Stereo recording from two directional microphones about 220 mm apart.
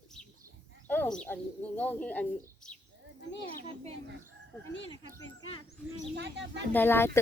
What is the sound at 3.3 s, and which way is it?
Speech, 50° left (ahead or behind).